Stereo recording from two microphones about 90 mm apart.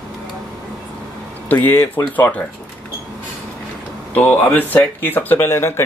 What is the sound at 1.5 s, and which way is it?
Speech, 20° left (ahead or behind).